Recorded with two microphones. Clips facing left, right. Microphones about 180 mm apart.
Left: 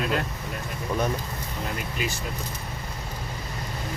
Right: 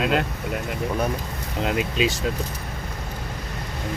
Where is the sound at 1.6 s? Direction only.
90° right.